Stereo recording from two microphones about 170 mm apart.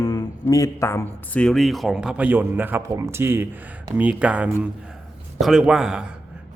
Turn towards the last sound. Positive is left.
turn(degrees=-5)  # may be behind; listen again after turning